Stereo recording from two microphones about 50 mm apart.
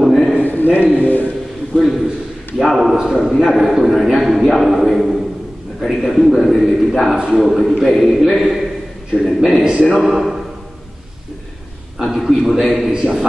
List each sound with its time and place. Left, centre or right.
0.0 s a sound: centre
0.4 s a sound: left
0.9 s a man's voice: left
1.7 s a man's voice: left
2.6 s a man's voice: centre
9.6 s speech: centre
9.8 s a man's voice: centre
12.0 s a man's voice: centre